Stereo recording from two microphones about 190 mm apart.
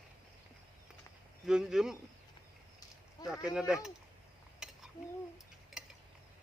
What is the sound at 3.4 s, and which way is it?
Speech, 5° right (ahead or behind).